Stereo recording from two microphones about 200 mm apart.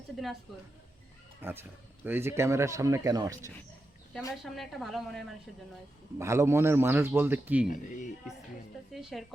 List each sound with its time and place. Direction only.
1.4 s a man's voice: 10° right (ahead or behind)
4.4 s a woman's voice: centre (ahead or behind)
6.1 s a man's voice: 15° right (ahead or behind)
7.7 s speech: 40° left (ahead or behind)
8.9 s a woman's voice: centre (ahead or behind)